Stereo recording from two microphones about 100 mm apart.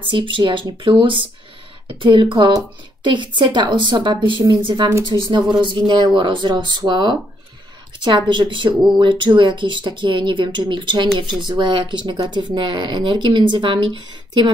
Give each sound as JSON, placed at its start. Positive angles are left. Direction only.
{"t": 0.0, "sound": "speech", "side_deg": -55}